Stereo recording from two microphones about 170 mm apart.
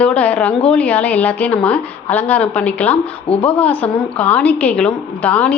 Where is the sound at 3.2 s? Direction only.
35° left (ahead or behind).